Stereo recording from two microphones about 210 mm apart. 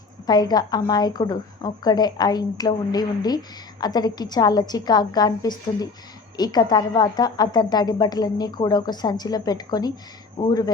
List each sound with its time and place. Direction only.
0.3 s a woman's voice: 20° left (ahead or behind)